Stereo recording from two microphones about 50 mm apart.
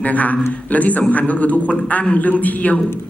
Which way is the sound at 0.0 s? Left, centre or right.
Left.